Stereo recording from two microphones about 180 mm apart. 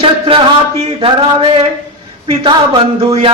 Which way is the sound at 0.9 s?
30° right (ahead or behind).